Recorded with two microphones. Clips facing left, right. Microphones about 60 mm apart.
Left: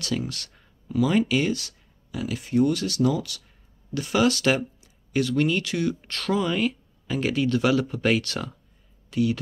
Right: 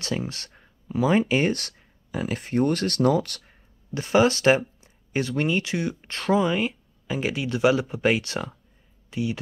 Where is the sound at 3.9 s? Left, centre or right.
Right.